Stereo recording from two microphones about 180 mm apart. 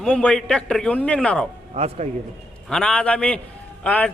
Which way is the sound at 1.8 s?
40° right (ahead or behind).